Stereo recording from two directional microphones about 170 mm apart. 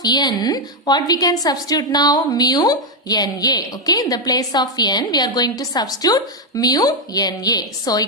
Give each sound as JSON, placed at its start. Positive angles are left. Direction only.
{"t": 0.0, "sound": "a woman's voice", "side_deg": 25}